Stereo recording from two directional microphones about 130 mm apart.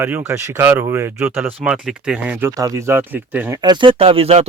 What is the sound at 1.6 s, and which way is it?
Speech, 5° right (ahead or behind).